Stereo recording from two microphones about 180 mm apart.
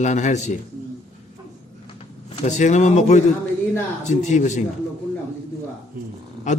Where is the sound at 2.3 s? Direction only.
40° left (ahead or behind).